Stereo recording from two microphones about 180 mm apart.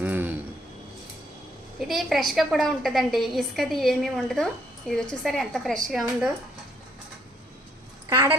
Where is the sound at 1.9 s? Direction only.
Centre (ahead or behind).